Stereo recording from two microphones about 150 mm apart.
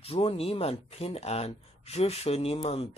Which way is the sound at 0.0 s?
40° left (ahead or behind).